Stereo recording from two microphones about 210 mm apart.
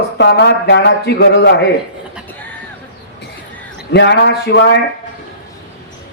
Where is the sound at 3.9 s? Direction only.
55° left (ahead or behind).